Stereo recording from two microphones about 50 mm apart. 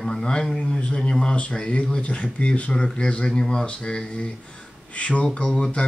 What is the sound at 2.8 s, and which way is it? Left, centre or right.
Speech, centre.